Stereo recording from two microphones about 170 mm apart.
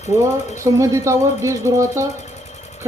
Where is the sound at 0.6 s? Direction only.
15° right (ahead or behind).